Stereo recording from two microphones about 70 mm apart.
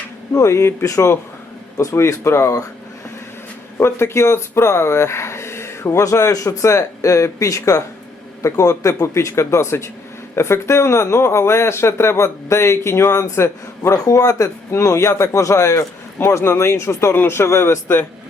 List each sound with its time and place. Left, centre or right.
0.3 s a man's voice: left
3.8 s a man's voice: left
13.9 s speech: left
14.7 s a man's voice: left